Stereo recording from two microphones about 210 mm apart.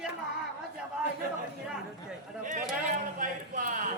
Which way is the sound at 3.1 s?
40° right (ahead or behind).